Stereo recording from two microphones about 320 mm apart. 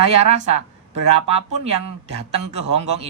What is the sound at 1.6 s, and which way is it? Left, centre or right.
Speech, centre.